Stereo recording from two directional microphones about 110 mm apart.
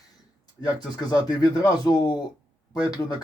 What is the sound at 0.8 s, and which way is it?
Speech, 40° left (ahead or behind).